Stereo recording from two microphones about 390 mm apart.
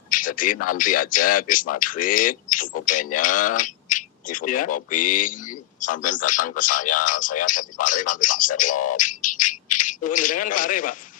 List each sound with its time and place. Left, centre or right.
0.1 s a man's voice: left